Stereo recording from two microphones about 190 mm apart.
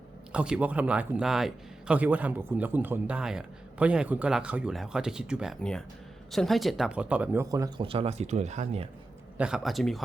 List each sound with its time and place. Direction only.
0.3 s speech: 5° right (ahead or behind)
7.5 s speech: 20° right (ahead or behind)
7.9 s speech: 30° right (ahead or behind)
9.4 s speech: centre (ahead or behind)